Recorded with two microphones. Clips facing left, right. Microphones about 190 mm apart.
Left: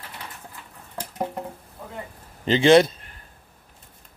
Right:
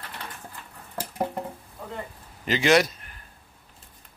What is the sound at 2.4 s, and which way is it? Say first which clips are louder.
Speech: left 6 dB; 30° left (ahead or behind).